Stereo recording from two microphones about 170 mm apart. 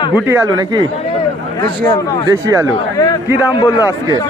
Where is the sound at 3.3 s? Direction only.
25° left (ahead or behind).